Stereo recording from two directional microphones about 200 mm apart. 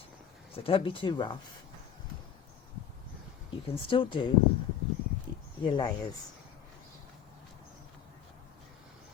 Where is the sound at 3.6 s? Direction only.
25° left (ahead or behind).